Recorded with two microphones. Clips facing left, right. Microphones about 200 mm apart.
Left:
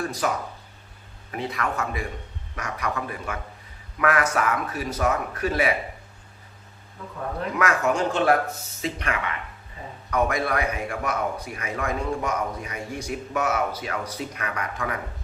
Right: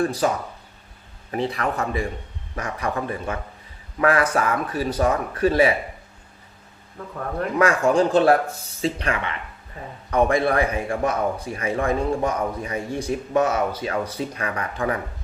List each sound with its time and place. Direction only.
0.0 s a man's voice: 30° right (ahead or behind)
1.3 s a man's voice: 30° right (ahead or behind)
7.6 s a man's voice: 30° right (ahead or behind)